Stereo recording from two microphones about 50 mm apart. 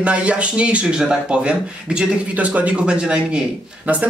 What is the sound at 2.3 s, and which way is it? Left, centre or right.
Speech, right.